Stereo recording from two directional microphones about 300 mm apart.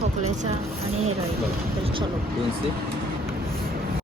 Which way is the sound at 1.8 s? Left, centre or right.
Centre.